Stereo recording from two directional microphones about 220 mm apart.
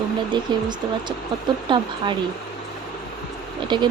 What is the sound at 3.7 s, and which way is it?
Speech, 20° right (ahead or behind).